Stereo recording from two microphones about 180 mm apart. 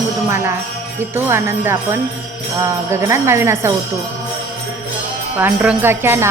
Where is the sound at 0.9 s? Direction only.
15° right (ahead or behind).